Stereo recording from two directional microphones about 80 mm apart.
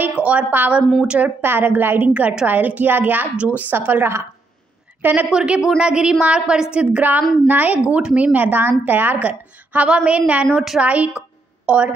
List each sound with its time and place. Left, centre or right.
0.0 s a woman's voice: centre
1.4 s a woman's voice: right; by 10.8 s centre
10.8 s a woman's voice: centre